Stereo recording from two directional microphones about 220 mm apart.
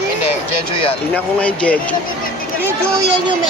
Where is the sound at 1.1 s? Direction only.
5° left (ahead or behind).